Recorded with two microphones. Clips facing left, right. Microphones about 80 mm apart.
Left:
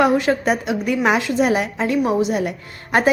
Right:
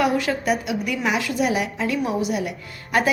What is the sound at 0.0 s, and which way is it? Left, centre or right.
A woman's voice, left.